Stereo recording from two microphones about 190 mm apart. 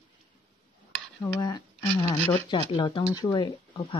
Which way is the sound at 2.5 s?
25° left (ahead or behind).